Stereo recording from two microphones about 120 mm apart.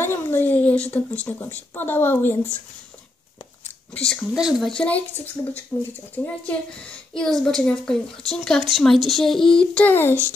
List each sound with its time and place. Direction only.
0.0 s a sound: 20° left (ahead or behind)
0.9 s a woman's voice: 10° left (ahead or behind)
3.9 s a woman's voice: 5° left (ahead or behind)
6.1 s a woman's voice: 15° left (ahead or behind)